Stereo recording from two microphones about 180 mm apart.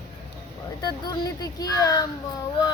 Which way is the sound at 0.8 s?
20° left (ahead or behind).